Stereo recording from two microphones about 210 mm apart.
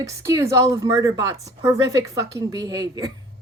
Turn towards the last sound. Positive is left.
turn(degrees=-15)  # may be behind; listen again after turning